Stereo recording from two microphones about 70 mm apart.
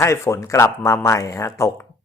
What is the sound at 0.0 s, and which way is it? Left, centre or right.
A man's voice, left.